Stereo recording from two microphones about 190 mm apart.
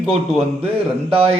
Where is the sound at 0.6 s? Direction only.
30° right (ahead or behind).